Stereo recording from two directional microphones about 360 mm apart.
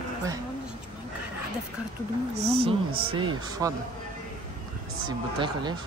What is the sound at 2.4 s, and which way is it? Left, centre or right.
Speech, centre.